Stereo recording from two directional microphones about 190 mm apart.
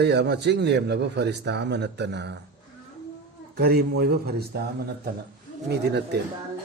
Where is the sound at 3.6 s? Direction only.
55° right (ahead or behind).